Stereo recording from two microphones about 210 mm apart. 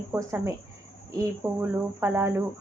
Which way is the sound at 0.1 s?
15° right (ahead or behind).